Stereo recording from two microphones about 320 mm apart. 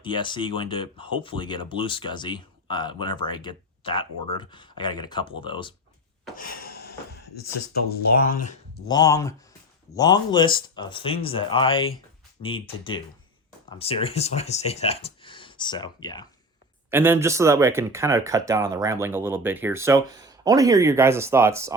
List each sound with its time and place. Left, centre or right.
0.0 s speech: centre
6.3 s a sound: left
7.3 s speech: left
7.9 s speech: left
8.9 s speech: centre
16.9 s speech: centre